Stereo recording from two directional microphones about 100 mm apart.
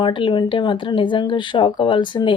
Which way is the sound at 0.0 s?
55° left (ahead or behind).